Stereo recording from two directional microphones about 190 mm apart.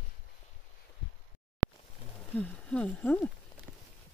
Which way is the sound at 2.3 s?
10° left (ahead or behind).